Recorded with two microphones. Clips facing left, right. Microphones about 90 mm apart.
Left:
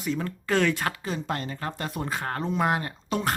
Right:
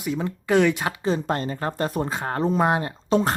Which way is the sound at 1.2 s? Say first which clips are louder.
Right 5 dB; 40° right (ahead or behind).